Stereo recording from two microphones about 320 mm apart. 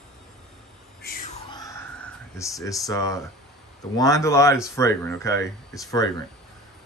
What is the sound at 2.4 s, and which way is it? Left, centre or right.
Speech, centre.